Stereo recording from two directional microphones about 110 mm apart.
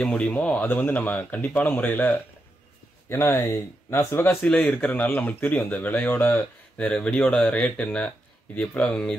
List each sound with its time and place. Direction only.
0.0 s speech: 10° left (ahead or behind)
6.3 s speech: 10° left (ahead or behind)